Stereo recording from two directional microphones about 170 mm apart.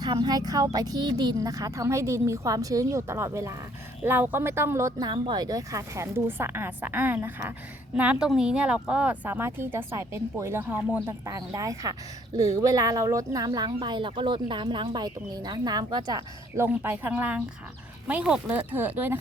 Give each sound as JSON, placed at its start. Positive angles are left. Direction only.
{"t": 0.0, "sound": "speech", "side_deg": -25}
{"t": 16.6, "sound": "speech", "side_deg": -10}